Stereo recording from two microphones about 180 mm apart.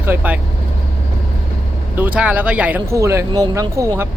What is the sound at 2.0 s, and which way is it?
Speech, 10° right (ahead or behind).